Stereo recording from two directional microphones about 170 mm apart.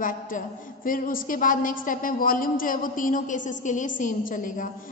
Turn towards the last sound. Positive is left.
turn(degrees=50)  # may be behind; listen again after turning